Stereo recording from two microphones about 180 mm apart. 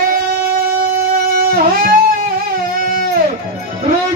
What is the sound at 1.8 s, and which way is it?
Music, 55° right (ahead or behind).